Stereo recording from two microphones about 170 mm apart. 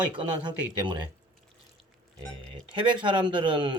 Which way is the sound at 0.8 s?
25° right (ahead or behind).